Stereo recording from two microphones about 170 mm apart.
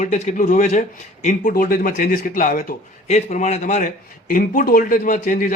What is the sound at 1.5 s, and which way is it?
Speech, 55° left (ahead or behind).